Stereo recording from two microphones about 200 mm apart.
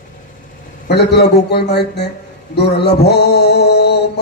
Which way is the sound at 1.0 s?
55° left (ahead or behind).